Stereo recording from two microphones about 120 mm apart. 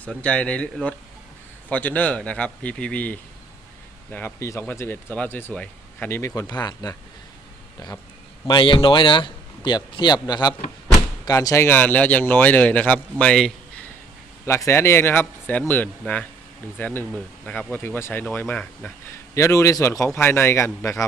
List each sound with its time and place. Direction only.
0.0 s a man's voice: 10° left (ahead or behind)
6.5 s speech: 35° left (ahead or behind); by 13.8 s 5° left (ahead or behind)
14.4 s a man's voice: 25° left (ahead or behind)